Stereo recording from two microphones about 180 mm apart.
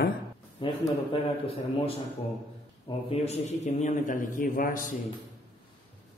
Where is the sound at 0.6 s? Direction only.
25° left (ahead or behind).